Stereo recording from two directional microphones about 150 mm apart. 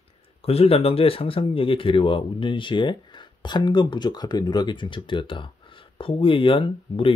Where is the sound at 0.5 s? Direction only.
40° left (ahead or behind).